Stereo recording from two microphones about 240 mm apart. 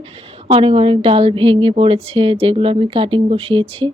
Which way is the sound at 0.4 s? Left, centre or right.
Right.